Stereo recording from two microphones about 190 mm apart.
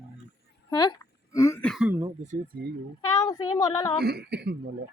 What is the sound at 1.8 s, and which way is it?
Speech, 15° right (ahead or behind).